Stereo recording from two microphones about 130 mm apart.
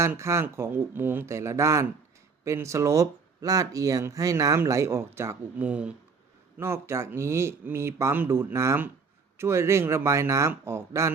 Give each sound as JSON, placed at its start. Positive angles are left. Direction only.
{"t": 0.0, "sound": "speech", "side_deg": -20}